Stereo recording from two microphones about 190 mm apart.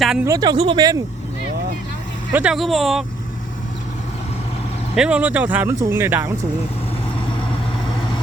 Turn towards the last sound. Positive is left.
turn(degrees=-15)  # may be behind; listen again after turning